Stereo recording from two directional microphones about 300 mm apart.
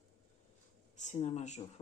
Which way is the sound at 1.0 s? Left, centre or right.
Left.